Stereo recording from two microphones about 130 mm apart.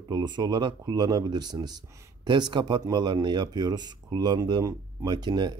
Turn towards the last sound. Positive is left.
turn(degrees=-35)  # may be behind; listen again after turning